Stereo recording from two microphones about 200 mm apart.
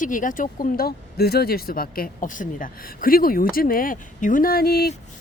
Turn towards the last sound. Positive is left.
turn(degrees=50)  # may be behind; listen again after turning